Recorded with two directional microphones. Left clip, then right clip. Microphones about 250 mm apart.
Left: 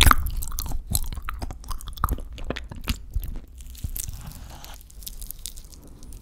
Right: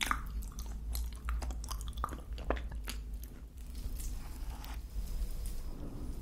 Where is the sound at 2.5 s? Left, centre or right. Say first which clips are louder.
Left 13 dB; left.